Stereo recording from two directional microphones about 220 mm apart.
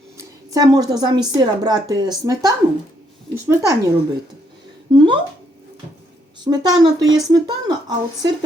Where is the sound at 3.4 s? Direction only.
15° right (ahead or behind).